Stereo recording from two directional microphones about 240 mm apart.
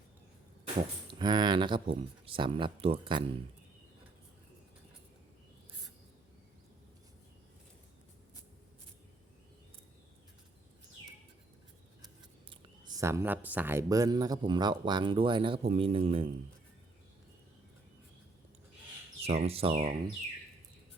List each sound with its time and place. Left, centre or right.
1.2 s speech: centre
12.5 s speech: centre
19.2 s speech: right